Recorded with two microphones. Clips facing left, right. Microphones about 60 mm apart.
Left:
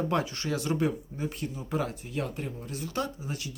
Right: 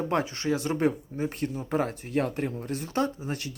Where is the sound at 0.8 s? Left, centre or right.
Right.